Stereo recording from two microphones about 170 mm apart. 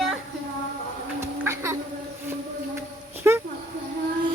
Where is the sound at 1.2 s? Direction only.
15° right (ahead or behind).